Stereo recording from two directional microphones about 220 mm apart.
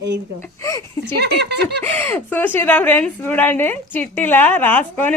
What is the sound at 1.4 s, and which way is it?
Speech, 50° right (ahead or behind).